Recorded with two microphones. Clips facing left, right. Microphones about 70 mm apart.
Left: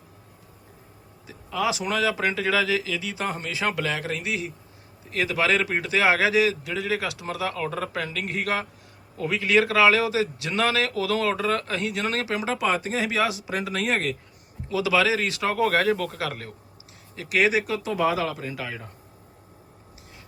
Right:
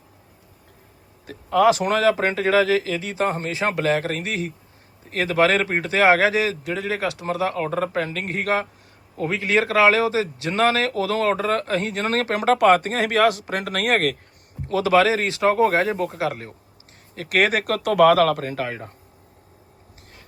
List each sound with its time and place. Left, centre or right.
1.3 s a man's voice: right
14.7 s speech: right
17.2 s speech: right